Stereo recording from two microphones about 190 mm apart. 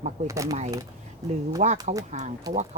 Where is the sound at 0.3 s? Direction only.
15° right (ahead or behind).